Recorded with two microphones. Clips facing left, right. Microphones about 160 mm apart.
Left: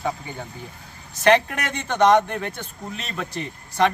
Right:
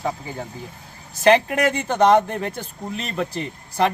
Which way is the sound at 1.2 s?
30° right (ahead or behind).